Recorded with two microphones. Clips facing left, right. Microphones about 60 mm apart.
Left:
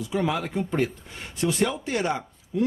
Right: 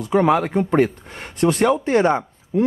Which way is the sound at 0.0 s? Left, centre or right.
Right.